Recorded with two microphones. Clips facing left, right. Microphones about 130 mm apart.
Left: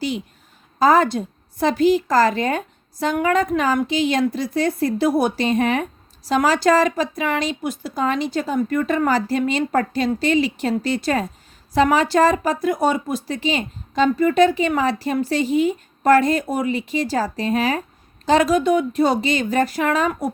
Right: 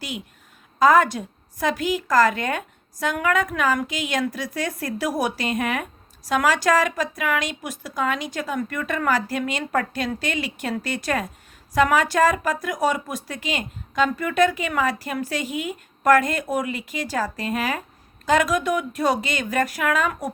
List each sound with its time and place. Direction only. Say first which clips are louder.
0.8 s a woman's voice: left 1 dB; 30° left (ahead or behind)